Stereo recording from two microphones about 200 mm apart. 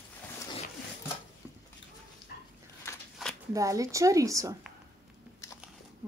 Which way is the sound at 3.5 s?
15° right (ahead or behind).